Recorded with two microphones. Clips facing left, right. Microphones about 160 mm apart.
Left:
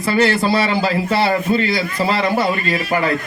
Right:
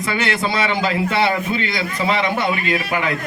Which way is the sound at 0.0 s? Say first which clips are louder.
Left 5 dB; 35° left (ahead or behind).